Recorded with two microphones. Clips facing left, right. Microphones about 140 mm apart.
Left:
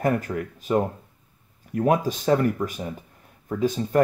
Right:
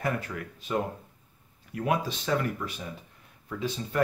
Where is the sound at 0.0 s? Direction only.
45° left (ahead or behind).